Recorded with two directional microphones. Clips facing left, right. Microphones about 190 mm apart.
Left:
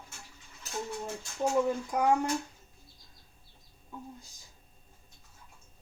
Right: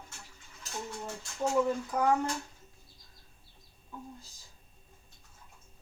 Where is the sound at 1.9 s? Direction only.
15° left (ahead or behind).